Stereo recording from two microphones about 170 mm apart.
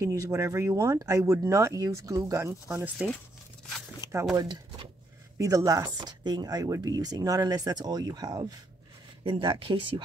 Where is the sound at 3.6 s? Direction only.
Centre (ahead or behind).